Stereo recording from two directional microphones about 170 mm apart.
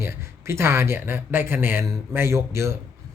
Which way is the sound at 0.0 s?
15° right (ahead or behind).